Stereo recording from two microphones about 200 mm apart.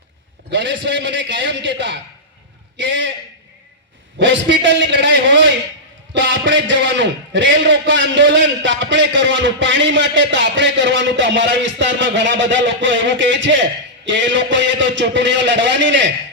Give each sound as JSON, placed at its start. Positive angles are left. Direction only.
{"t": 0.5, "sound": "a man's voice", "side_deg": -65}
{"t": 4.2, "sound": "a man's voice", "side_deg": -65}